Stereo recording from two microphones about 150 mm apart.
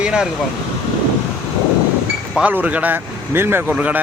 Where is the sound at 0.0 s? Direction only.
5° right (ahead or behind).